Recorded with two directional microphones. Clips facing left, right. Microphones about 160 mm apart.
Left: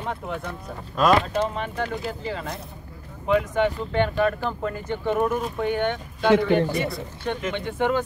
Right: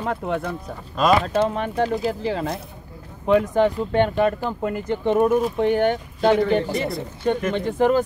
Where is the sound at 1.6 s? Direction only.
35° right (ahead or behind).